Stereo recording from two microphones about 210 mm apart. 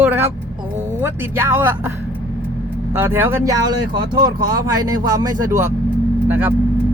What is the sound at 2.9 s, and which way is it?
Speech, 10° right (ahead or behind).